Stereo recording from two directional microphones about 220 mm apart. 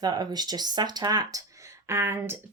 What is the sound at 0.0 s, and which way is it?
Speech, 20° right (ahead or behind).